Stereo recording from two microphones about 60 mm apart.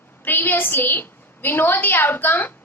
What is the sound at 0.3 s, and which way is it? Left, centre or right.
A woman's voice, left.